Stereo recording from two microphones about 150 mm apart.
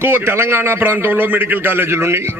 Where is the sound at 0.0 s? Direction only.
15° right (ahead or behind).